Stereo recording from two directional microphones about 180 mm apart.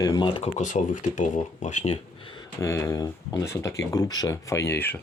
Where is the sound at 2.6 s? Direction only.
20° left (ahead or behind).